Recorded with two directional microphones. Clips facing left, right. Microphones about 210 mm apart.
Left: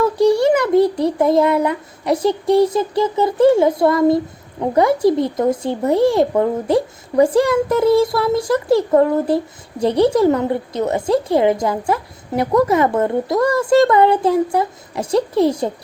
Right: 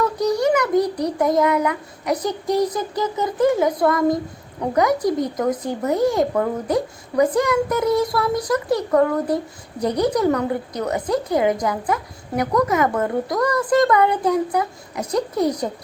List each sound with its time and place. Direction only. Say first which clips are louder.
0.0 s child singing: left 5 dB; 30° left (ahead or behind)
4.6 s a woman's voice: left 4 dB; 30° left (ahead or behind)